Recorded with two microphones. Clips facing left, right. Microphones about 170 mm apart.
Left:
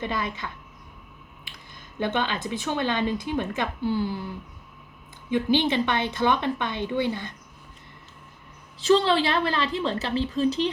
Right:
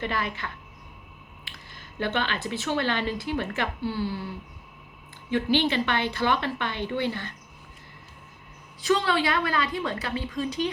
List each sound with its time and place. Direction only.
0.0 s speech: 20° left (ahead or behind)
1.5 s speech: 15° left (ahead or behind)
5.3 s speech: 20° left (ahead or behind)
9.0 s a woman's voice: 30° left (ahead or behind)